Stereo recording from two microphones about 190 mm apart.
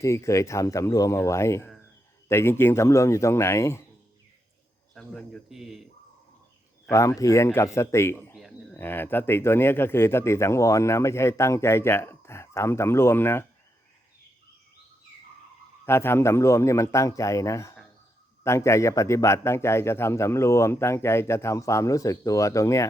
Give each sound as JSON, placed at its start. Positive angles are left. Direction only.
{"t": 0.0, "sound": "speech", "side_deg": 15}
{"t": 4.9, "sound": "speech", "side_deg": 0}
{"t": 6.9, "sound": "speech", "side_deg": 15}
{"t": 15.9, "sound": "speech", "side_deg": 15}